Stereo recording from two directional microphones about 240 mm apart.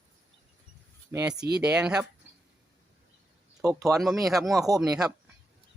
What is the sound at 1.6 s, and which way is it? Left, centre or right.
Speech, centre.